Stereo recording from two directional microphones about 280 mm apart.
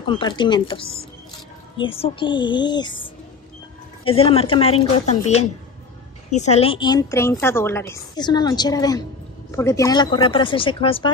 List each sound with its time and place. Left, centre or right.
0.0 s a woman's voice: centre